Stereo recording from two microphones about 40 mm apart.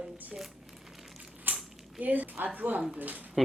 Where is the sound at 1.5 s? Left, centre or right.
Right.